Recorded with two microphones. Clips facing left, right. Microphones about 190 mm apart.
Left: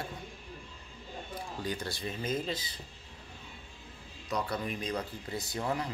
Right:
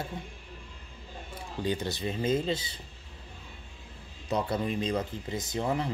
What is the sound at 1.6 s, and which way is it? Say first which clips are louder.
Speech: right 7 dB; 20° right (ahead or behind).